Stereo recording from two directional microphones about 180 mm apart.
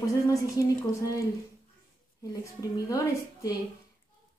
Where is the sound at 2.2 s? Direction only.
20° left (ahead or behind).